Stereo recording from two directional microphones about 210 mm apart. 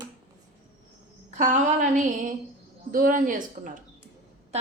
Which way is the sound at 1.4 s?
35° right (ahead or behind).